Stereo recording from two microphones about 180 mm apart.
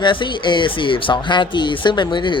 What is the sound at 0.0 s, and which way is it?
Speech, 25° left (ahead or behind).